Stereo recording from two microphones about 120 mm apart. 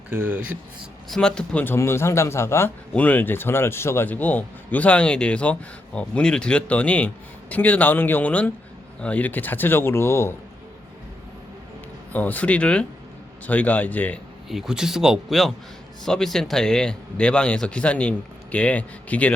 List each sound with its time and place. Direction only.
0.1 s speech: 15° right (ahead or behind)
1.1 s speech: 5° left (ahead or behind)
12.1 s speech: 15° left (ahead or behind)
14.5 s speech: 5° right (ahead or behind); by 19.3 s 10° left (ahead or behind)